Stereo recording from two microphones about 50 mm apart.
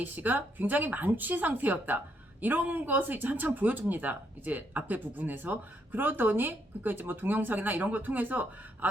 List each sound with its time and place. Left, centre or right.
0.0 s speech: right